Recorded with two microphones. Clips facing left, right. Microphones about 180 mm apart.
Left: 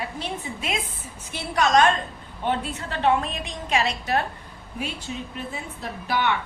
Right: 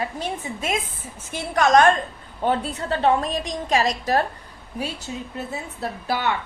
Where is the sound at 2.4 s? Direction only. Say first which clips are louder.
Right 4 dB; 35° right (ahead or behind).